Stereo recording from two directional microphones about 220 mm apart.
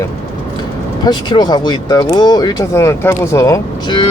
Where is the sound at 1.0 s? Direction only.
20° left (ahead or behind).